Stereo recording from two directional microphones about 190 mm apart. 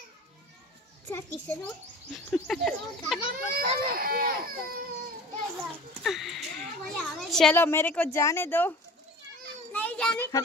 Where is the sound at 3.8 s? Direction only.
50° right (ahead or behind).